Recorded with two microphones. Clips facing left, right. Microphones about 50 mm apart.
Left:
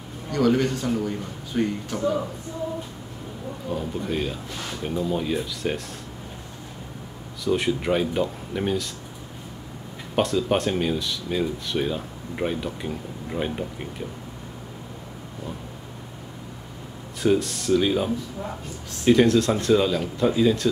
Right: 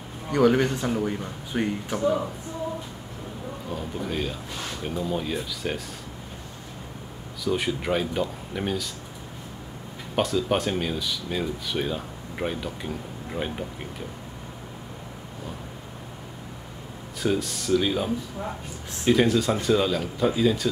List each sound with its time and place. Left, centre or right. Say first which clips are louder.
0.3 s a man's voice: right 1 dB; right
3.6 s speech: left 4 dB; centre
7.4 s speech: left 3 dB; centre
10.1 s speech: left 2 dB; centre
17.2 s speech: left 4 dB; centre